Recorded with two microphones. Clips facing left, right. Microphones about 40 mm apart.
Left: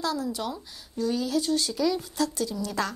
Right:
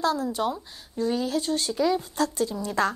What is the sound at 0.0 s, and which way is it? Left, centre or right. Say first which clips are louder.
Speech: right 4 dB; right.